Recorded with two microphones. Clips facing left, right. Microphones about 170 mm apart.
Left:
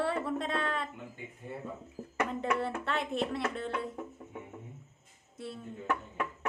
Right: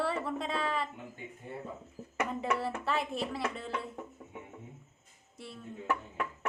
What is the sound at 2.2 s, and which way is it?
A woman's voice, centre (ahead or behind).